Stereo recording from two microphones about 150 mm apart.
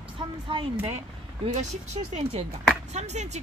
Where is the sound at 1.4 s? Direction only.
50° right (ahead or behind).